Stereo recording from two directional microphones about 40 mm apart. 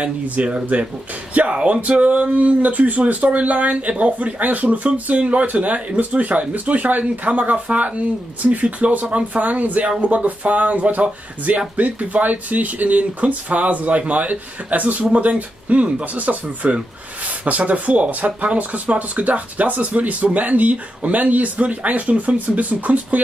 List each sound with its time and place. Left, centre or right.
0.0 s speech: right